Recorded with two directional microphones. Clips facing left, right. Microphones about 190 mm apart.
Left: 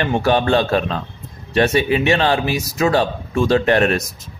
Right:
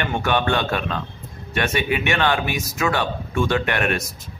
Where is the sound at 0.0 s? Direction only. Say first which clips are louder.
Left 5 dB; 35° left (ahead or behind).